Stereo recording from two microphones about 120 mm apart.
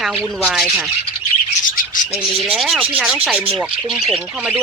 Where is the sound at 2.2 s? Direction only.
Centre (ahead or behind).